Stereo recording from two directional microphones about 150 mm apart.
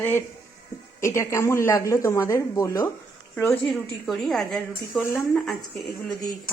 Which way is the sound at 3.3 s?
5° left (ahead or behind).